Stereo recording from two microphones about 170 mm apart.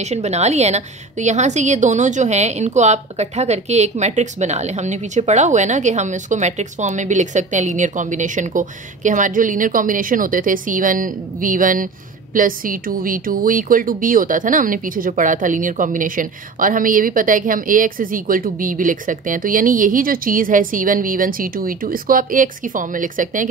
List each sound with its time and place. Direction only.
0.0 s a woman's voice: 40° right (ahead or behind)